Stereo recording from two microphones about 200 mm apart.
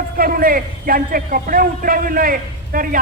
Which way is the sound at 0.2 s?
45° right (ahead or behind).